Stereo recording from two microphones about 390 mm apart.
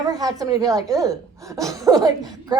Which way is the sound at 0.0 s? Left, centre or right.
Centre.